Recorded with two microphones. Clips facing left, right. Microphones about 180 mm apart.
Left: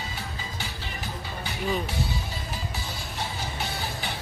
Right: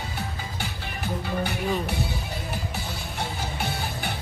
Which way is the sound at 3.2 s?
60° right (ahead or behind).